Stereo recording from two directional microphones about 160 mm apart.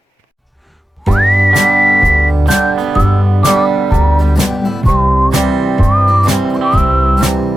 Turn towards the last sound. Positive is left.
turn(degrees=0)  # may be behind; listen again after turning